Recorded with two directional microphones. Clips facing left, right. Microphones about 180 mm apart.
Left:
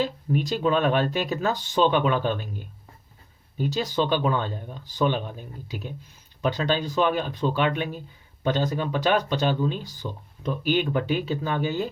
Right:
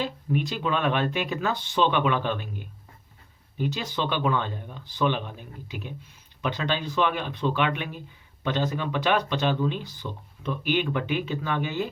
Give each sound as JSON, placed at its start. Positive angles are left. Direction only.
{"t": 0.0, "sound": "speech", "side_deg": 40}
{"t": 3.6, "sound": "speech", "side_deg": 40}